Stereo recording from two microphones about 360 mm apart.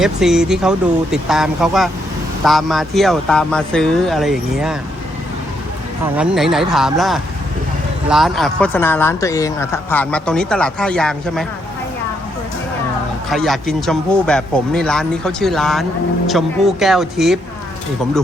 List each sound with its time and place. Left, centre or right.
0.0 s speech: centre
6.1 s speech: centre
13.3 s speech: centre